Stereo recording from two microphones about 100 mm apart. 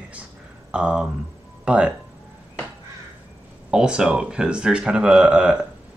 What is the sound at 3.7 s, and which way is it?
Speech, 10° right (ahead or behind).